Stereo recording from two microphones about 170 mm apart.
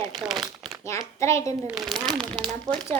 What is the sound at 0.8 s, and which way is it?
Speech, 15° left (ahead or behind).